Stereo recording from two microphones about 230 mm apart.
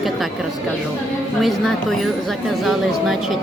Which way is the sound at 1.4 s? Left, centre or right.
Centre.